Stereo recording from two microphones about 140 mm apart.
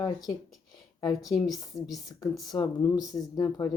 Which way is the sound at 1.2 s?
Centre (ahead or behind).